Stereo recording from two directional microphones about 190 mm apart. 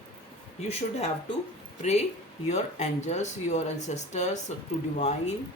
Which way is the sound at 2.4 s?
35° left (ahead or behind).